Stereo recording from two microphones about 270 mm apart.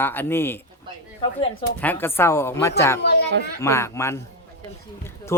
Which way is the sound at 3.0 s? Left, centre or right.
Left.